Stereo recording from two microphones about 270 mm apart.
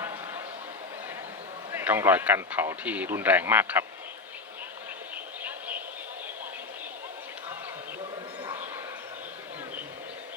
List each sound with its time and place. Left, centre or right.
1.7 s speech: centre
5.4 s vehicle: centre